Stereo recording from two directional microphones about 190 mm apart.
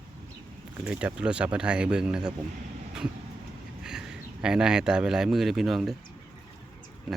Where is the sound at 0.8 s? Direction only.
5° right (ahead or behind).